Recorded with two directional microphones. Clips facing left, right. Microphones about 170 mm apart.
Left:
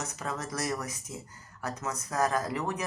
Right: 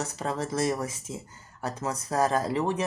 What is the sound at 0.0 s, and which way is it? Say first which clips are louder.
Speech: right 5 dB; 30° right (ahead or behind).